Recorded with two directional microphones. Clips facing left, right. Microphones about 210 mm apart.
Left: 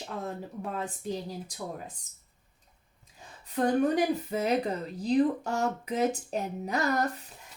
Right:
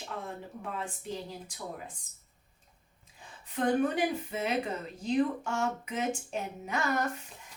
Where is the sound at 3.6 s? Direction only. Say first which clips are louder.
Left 3 dB; 40° left (ahead or behind).